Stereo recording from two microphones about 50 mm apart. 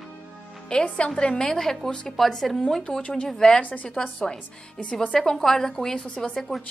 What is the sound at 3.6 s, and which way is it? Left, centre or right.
Speech, left.